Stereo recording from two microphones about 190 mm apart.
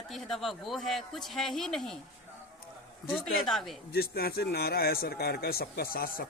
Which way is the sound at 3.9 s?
55° left (ahead or behind).